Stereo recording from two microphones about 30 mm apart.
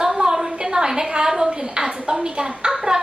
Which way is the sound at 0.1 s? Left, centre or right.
Right.